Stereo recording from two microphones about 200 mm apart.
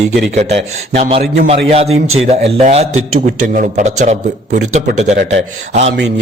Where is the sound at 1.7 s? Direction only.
30° right (ahead or behind).